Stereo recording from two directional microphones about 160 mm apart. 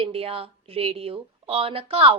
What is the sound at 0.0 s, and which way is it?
Speech, 40° right (ahead or behind).